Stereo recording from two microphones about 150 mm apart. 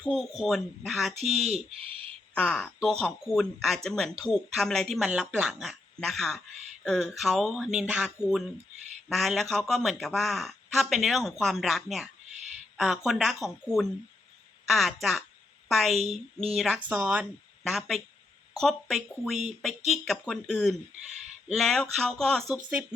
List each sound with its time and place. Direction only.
0.0 s speech: centre (ahead or behind)
1.3 s speech: 45° right (ahead or behind)
2.3 s a woman's voice: 5° left (ahead or behind)
14.7 s speech: centre (ahead or behind)
22.5 s speech: 10° right (ahead or behind)